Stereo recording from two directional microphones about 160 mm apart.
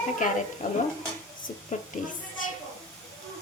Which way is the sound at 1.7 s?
50° left (ahead or behind).